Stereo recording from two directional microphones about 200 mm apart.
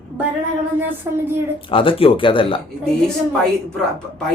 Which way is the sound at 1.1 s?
15° right (ahead or behind).